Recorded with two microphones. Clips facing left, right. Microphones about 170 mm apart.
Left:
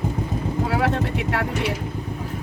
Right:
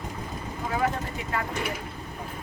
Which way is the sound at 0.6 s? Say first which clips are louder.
Left 4 dB; 80° left.